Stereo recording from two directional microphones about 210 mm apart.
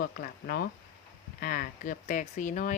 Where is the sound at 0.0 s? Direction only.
45° left (ahead or behind).